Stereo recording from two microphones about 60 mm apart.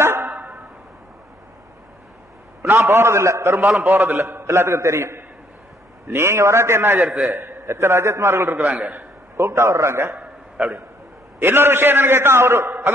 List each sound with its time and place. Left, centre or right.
0.0 s a sound: right
0.3 s a sound: right
2.6 s a man's voice: right
7.0 s a man's voice: centre
7.3 s a man's voice: right
11.3 s a man's voice: right